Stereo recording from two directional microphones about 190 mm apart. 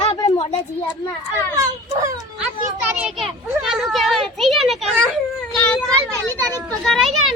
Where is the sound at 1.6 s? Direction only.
15° right (ahead or behind).